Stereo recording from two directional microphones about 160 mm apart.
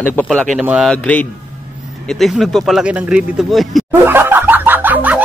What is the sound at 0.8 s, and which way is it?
Speech, 10° left (ahead or behind).